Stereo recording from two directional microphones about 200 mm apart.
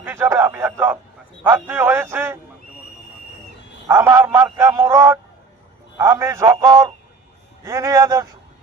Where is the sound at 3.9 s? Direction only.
15° right (ahead or behind).